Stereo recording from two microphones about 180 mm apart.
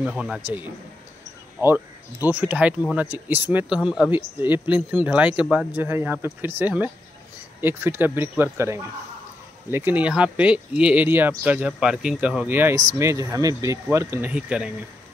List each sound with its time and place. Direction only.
0.0 s a man's voice: 5° right (ahead or behind)
1.6 s speech: 10° right (ahead or behind)